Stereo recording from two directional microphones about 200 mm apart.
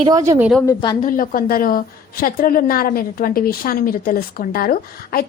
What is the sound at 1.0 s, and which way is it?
A woman's voice, 45° left (ahead or behind).